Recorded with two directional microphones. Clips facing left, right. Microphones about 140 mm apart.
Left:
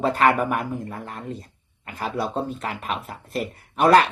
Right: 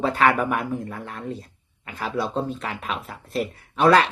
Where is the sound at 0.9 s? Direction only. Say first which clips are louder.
Even; 40° left (ahead or behind).